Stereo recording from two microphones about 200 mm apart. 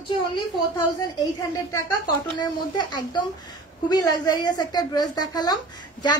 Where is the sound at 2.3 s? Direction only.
20° left (ahead or behind).